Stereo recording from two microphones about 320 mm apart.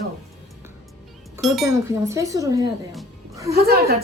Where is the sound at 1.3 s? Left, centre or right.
Centre.